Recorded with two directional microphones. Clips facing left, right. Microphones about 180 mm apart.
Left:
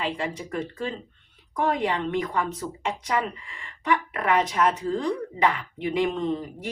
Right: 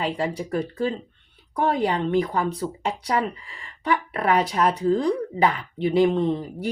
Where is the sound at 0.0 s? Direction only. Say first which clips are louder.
Right 4 dB; 35° right (ahead or behind).